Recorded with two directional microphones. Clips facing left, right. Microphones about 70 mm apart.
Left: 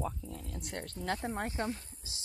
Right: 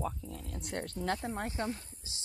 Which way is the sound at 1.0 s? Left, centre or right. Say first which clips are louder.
Left 1 dB; centre.